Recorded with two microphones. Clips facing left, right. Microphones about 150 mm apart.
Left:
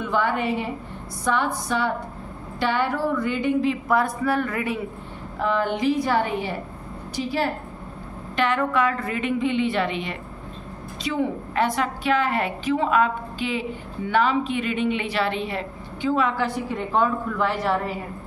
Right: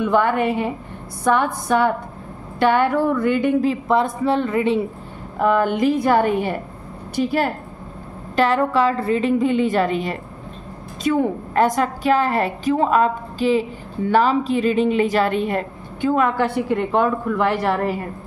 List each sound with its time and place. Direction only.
0.0 s a woman's voice: 55° right (ahead or behind)
3.9 s a woman's voice: 25° right (ahead or behind)
5.4 s a woman's voice: 50° right (ahead or behind)
8.4 s a woman's voice: 35° right (ahead or behind); by 17.9 s 65° right (ahead or behind)